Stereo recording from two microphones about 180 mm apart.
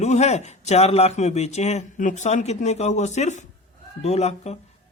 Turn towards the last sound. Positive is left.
turn(degrees=35)  # may be behind; listen again after turning